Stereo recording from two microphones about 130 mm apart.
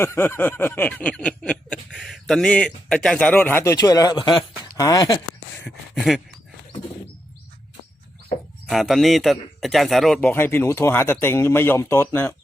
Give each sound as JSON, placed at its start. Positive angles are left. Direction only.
{"t": 0.0, "sound": "snicker", "side_deg": 20}
{"t": 4.6, "sound": "speech", "side_deg": 30}
{"t": 5.6, "sound": "a man's voice", "side_deg": 0}
{"t": 8.6, "sound": "a man's voice", "side_deg": 0}
{"t": 10.2, "sound": "snicker", "side_deg": 15}